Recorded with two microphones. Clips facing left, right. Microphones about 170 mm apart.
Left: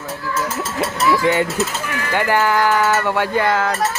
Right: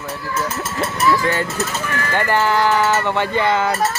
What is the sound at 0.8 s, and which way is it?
Speech, 15° left (ahead or behind).